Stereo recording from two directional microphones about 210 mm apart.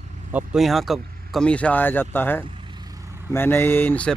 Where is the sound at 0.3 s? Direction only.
5° right (ahead or behind).